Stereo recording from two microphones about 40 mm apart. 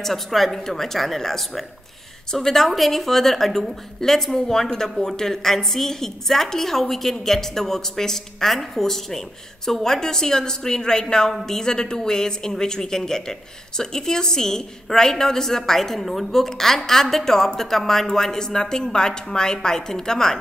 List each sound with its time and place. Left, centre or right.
0.0 s a woman's voice: centre